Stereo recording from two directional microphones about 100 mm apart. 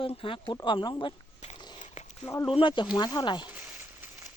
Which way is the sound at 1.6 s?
50° left (ahead or behind).